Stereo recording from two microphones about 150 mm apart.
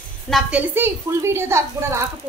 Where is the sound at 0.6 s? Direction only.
15° right (ahead or behind).